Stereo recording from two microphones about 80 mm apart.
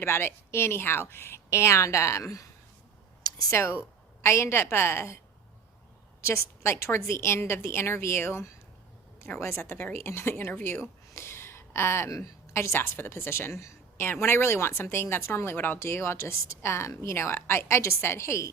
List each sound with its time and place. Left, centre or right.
0.0 s a woman's voice: left
3.5 s a woman's voice: left
6.2 s a woman's voice: left